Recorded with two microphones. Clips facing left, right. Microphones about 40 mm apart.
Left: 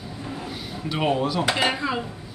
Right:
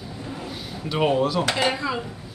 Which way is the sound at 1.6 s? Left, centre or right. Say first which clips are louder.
Even; centre.